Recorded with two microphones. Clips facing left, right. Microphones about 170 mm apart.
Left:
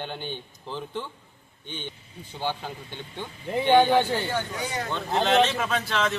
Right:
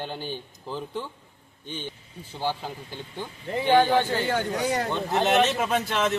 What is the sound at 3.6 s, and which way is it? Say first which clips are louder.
Speech: left 1 dB; centre (ahead or behind).